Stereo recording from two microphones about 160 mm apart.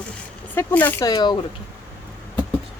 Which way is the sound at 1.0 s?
25° left (ahead or behind).